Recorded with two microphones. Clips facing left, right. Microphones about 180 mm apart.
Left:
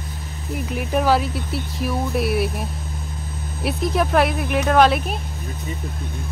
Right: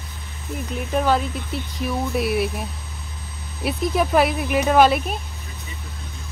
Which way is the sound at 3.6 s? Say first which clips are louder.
Even; centre (ahead or behind).